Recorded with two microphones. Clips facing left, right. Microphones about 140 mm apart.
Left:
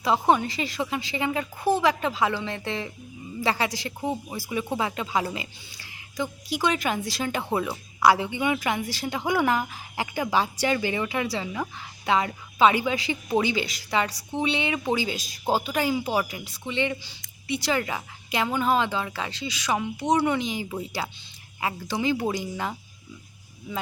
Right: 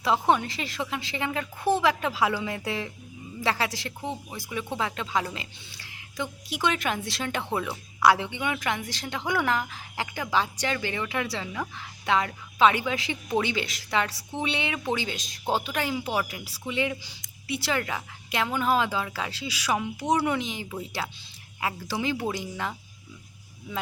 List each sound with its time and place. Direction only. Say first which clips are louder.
0.0 s speech: left 2 dB; centre (ahead or behind)